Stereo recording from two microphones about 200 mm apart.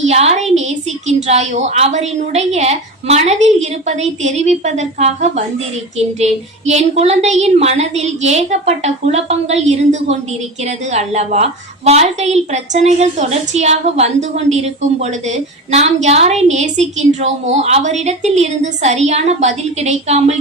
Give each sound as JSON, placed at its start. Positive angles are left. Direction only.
{"t": 0.0, "sound": "a woman's voice", "side_deg": -30}